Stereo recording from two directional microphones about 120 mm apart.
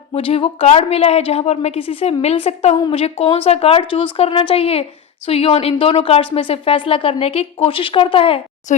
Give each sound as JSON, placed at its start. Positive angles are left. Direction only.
{"t": 0.1, "sound": "a woman's voice", "side_deg": 50}